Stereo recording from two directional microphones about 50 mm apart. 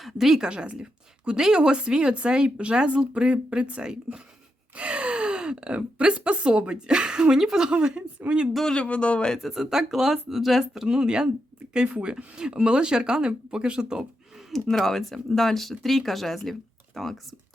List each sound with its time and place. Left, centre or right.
0.0 s a woman's voice: centre
0.4 s a woman's voice: centre
8.6 s speech: centre
9.4 s speech: centre
10.8 s speech: centre
14.5 s speech: centre